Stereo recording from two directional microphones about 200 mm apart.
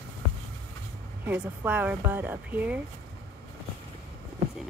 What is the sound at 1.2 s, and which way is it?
Speech, 10° right (ahead or behind).